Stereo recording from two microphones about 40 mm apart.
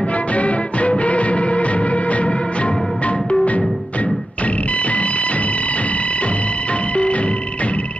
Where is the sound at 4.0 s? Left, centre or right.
Left.